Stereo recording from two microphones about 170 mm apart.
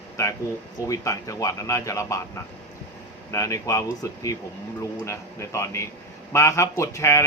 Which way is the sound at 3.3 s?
20° left (ahead or behind).